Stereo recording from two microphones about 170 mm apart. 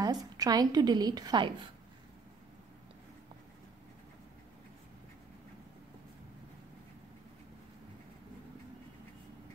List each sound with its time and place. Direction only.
0.0 s a woman's voice: 20° right (ahead or behind)